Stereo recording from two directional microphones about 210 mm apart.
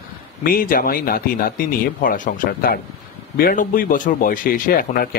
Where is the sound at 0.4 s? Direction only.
45° left (ahead or behind).